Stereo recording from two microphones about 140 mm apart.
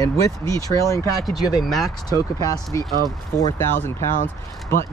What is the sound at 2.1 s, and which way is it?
Speech, 25° left (ahead or behind).